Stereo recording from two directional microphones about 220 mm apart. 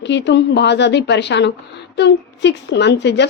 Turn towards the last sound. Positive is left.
turn(degrees=50)  # may be behind; listen again after turning